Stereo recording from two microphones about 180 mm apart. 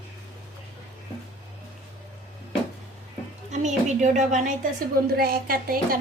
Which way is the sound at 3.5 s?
40° right (ahead or behind).